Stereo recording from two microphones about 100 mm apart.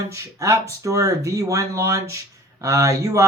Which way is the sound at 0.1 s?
30° right (ahead or behind).